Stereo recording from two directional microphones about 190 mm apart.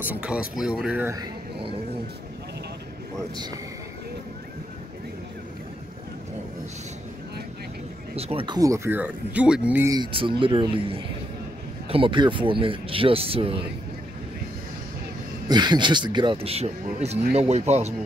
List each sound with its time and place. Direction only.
0.0 s speech: 10° right (ahead or behind); by 1.8 s 25° right (ahead or behind)
8.2 s speech: 30° right (ahead or behind); by 9.9 s 10° right (ahead or behind)
9.9 s speech: 25° right (ahead or behind)
15.4 s speech: 20° right (ahead or behind)